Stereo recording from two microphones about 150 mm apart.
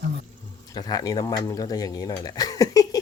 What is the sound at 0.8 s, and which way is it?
Speech, 25° left (ahead or behind).